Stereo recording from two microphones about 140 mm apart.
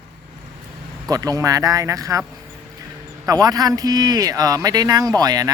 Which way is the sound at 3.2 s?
25° right (ahead or behind).